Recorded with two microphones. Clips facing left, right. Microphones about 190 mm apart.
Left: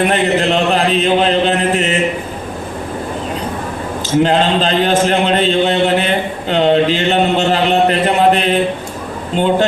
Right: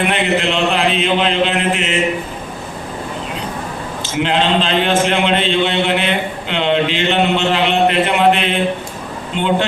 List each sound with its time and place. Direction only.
0.0 s mantra: 40° left (ahead or behind)
4.2 s a man's voice: 40° left (ahead or behind)